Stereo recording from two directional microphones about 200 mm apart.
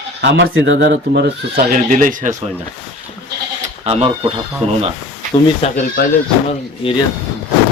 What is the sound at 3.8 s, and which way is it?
Speech, 30° right (ahead or behind).